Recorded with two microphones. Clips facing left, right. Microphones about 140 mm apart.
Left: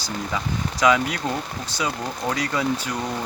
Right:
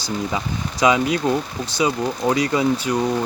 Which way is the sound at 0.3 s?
20° right (ahead or behind).